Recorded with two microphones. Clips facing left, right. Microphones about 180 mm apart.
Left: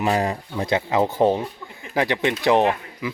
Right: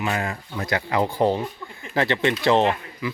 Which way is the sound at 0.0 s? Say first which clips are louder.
Left 5 dB; 35° left (ahead or behind).